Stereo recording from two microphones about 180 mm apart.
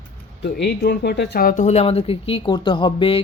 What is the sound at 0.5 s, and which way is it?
Speech, 70° left (ahead or behind).